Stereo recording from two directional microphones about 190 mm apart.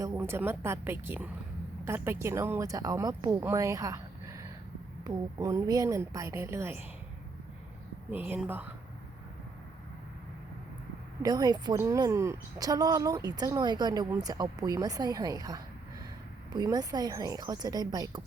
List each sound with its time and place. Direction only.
0.0 s speech: 15° right (ahead or behind)
8.1 s speech: 10° right (ahead or behind)
11.2 s a woman's voice: 20° right (ahead or behind)